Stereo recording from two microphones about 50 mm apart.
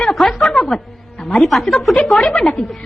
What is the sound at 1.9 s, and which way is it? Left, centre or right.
Speech, centre.